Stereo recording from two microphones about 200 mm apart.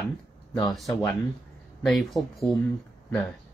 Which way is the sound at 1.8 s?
Centre (ahead or behind).